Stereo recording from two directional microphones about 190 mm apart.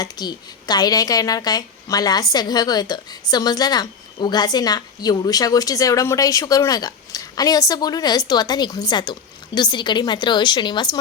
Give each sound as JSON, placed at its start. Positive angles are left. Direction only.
{"t": 0.0, "sound": "a woman's voice", "side_deg": 20}